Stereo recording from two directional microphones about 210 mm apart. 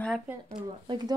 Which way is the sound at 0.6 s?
20° right (ahead or behind).